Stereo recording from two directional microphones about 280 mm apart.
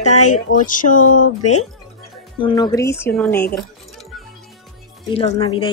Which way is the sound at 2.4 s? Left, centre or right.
Centre.